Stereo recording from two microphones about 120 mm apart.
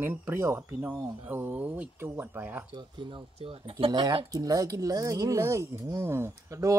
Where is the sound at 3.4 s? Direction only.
50° right (ahead or behind).